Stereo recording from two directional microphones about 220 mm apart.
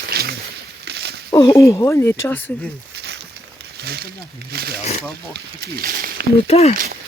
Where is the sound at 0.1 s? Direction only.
45° right (ahead or behind).